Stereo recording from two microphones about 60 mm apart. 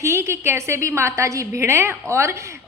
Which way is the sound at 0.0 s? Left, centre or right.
Right.